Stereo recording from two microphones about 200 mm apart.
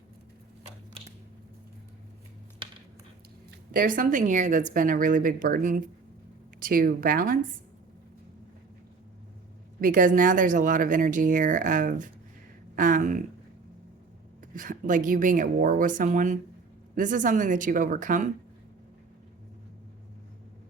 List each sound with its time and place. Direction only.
3.7 s speech: 45° right (ahead or behind)
9.8 s speech: 40° right (ahead or behind)
14.5 s speech: 40° right (ahead or behind)